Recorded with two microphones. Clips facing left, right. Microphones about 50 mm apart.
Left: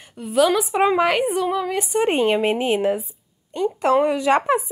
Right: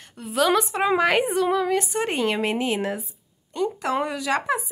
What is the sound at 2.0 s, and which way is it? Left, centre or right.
Speech, centre.